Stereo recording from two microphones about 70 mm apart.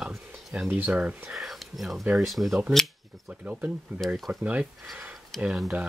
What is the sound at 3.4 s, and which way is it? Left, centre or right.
Speech, centre.